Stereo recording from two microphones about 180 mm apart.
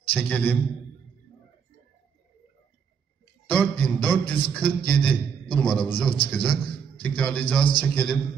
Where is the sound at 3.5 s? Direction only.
10° left (ahead or behind).